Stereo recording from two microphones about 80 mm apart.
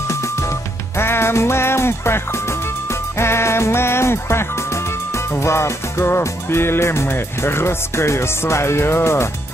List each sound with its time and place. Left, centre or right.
0.1 s music: left